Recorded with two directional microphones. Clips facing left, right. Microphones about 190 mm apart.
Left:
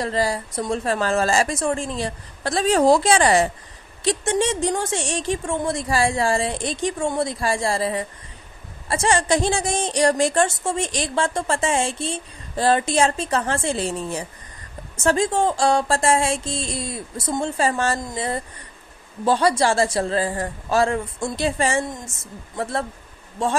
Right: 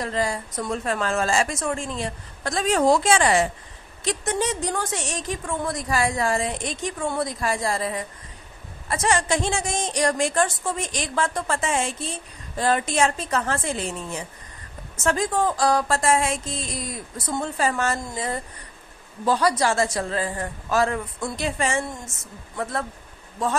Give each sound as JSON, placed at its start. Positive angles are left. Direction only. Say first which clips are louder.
{"t": 0.0, "sound": "a woman's voice", "louder": "left 3 dB", "side_deg": 35}